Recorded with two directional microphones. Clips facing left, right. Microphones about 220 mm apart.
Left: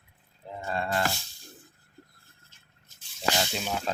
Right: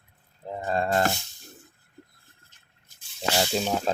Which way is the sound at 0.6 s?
40° right (ahead or behind).